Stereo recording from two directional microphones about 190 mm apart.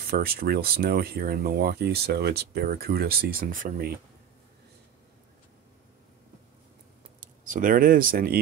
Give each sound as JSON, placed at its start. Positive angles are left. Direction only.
{"t": 0.0, "sound": "speech", "side_deg": -50}
{"t": 7.2, "sound": "speech", "side_deg": -45}